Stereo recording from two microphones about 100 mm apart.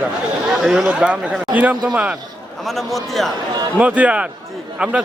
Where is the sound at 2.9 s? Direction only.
Centre (ahead or behind).